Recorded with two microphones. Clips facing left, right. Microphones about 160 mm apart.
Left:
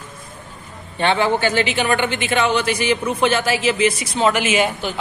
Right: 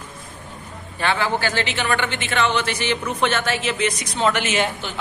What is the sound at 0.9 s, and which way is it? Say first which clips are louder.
A woman's voice: left 4 dB; 25° left (ahead or behind).